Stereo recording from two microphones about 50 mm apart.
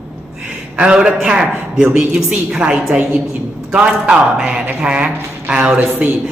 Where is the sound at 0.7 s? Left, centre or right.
Right.